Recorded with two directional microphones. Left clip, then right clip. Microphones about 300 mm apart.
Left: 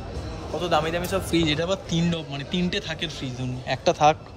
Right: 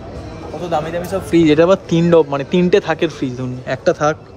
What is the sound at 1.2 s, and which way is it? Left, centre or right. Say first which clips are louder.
A man's voice: right 17 dB; centre.